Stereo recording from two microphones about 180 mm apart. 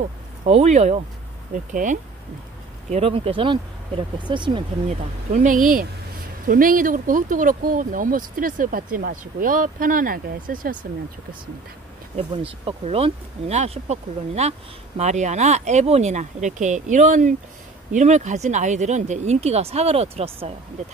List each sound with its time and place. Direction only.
0.5 s speech: 40° right (ahead or behind)
2.9 s speech: 30° right (ahead or behind)
4.8 s speech: 40° right (ahead or behind)
12.2 s speech: 30° right (ahead or behind)